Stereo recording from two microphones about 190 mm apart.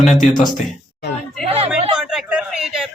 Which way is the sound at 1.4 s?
30° right (ahead or behind).